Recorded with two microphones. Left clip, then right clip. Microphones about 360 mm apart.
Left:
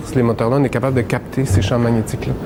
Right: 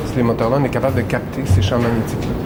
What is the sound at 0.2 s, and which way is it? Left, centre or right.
A man's voice, left.